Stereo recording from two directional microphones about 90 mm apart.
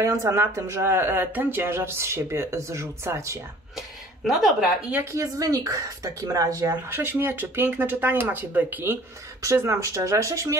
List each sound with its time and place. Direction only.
0.0 s speech: 30° right (ahead or behind)
3.7 s speech: centre (ahead or behind)
5.1 s speech: 40° right (ahead or behind)
6.9 s speech: 25° right (ahead or behind)
9.4 s speech: 30° right (ahead or behind)